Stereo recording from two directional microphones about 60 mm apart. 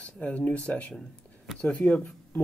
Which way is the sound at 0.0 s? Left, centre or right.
Left.